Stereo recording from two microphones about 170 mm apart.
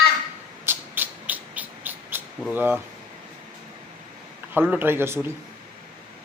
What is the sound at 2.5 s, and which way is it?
Speech, 10° right (ahead or behind).